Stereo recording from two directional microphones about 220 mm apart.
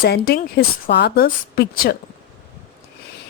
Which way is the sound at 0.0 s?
45° left (ahead or behind).